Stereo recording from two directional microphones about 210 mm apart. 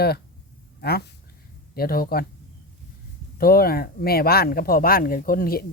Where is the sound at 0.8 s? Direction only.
50° left (ahead or behind).